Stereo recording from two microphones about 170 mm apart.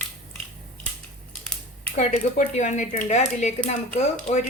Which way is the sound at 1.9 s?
45° left (ahead or behind).